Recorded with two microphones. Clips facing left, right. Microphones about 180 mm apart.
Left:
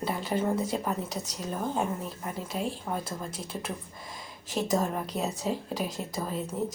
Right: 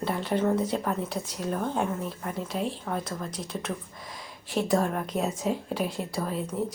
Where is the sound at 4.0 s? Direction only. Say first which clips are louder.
Right 1 dB; centre (ahead or behind).